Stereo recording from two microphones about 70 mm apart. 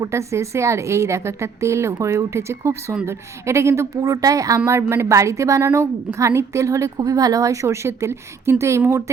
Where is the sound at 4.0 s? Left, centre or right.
Right.